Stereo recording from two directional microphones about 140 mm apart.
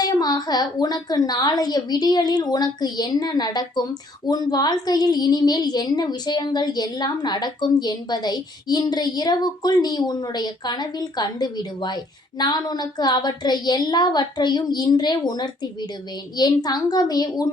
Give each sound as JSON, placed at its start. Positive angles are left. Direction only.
{"t": 0.0, "sound": "a woman's voice", "side_deg": 30}